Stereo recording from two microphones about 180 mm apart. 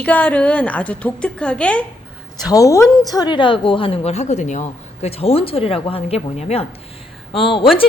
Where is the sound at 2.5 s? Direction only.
20° left (ahead or behind).